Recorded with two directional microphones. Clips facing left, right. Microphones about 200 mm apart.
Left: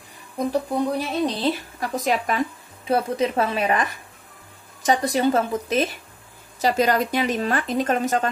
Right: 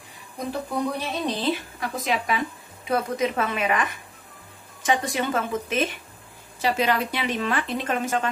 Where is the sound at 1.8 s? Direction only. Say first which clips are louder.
Left 3 dB; 40° left (ahead or behind).